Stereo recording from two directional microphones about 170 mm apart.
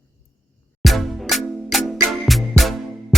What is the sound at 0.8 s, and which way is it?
Music, centre (ahead or behind).